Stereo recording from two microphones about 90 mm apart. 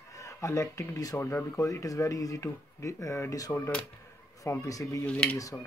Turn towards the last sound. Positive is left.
turn(degrees=15)  # may be behind; listen again after turning